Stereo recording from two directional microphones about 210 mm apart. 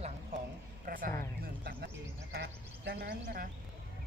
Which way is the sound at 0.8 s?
45° right (ahead or behind).